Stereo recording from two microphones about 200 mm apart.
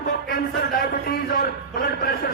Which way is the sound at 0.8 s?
50° left (ahead or behind).